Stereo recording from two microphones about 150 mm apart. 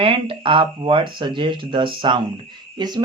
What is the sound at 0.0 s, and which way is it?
Speech, 35° right (ahead or behind).